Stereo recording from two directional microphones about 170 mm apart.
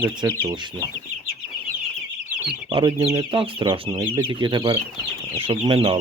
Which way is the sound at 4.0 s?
15° right (ahead or behind).